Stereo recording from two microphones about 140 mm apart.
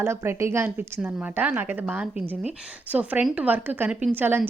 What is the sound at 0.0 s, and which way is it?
A woman's voice, 20° right (ahead or behind).